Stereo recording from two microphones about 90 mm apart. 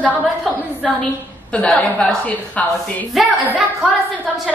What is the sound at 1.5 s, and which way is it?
A woman's voice, 15° left (ahead or behind).